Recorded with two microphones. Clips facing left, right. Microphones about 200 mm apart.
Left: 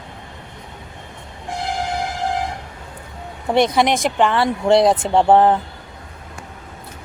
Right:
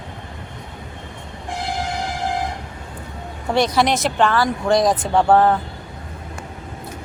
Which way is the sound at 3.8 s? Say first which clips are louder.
Left 1 dB; 15° left (ahead or behind).